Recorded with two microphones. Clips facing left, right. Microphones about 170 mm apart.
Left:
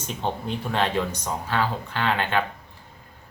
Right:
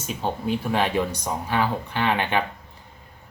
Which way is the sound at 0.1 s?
5° right (ahead or behind).